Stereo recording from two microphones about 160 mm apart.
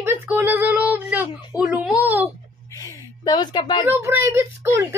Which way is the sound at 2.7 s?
25° left (ahead or behind).